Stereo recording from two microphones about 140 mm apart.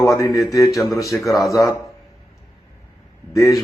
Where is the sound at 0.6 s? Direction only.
Centre (ahead or behind).